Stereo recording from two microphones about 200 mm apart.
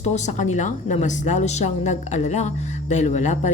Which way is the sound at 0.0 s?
35° left (ahead or behind).